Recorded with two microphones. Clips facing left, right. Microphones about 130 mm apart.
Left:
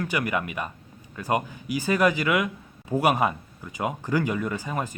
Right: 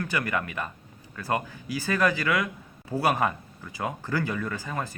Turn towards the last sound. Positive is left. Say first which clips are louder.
# left 3 dB
turn(degrees=15)  # may be behind; listen again after turning